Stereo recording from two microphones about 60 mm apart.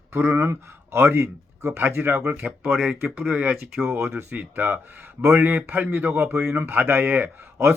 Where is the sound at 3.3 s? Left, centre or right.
Centre.